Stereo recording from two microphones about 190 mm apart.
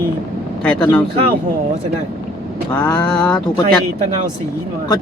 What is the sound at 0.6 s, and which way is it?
Vehicle, 5° left (ahead or behind).